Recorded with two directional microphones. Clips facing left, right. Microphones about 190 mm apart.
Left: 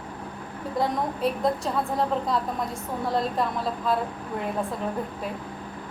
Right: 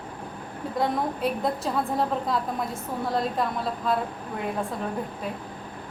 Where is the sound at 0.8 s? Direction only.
Centre (ahead or behind).